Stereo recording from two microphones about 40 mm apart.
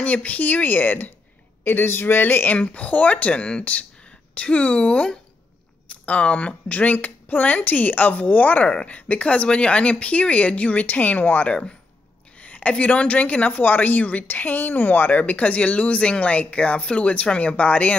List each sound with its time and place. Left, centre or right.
0.0 s speech: left
2.5 s speech: left
8.6 s speech: left
11.4 s speech: left
12.4 s speech: left